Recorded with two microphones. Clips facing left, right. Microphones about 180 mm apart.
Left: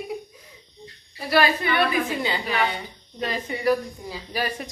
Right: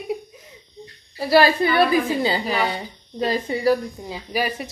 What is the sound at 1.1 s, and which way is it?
A woman's voice, 30° right (ahead or behind).